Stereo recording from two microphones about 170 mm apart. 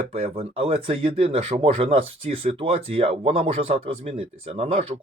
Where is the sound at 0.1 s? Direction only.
35° right (ahead or behind).